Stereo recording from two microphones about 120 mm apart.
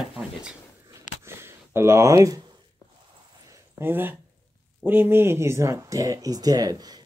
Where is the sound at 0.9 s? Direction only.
20° right (ahead or behind).